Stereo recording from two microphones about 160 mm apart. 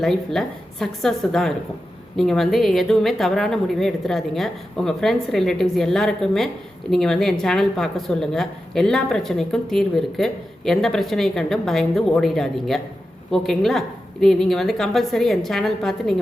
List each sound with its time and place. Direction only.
0.0 s a woman's voice: centre (ahead or behind)